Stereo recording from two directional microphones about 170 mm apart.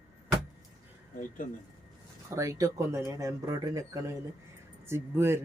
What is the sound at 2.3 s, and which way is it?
Speech, 20° right (ahead or behind).